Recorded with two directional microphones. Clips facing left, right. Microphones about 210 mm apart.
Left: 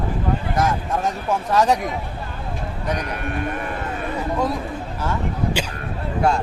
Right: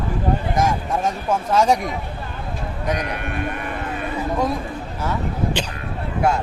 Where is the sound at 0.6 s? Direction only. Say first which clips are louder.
Left 1 dB; 10° right (ahead or behind).